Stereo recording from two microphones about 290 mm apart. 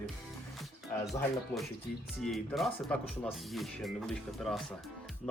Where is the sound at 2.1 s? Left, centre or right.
Centre.